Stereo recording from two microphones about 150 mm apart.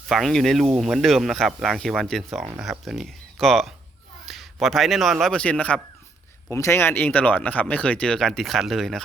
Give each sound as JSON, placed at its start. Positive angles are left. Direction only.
{"t": 0.1, "sound": "speech", "side_deg": 0}